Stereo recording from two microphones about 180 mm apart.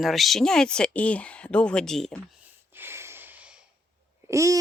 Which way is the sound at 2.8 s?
15° right (ahead or behind).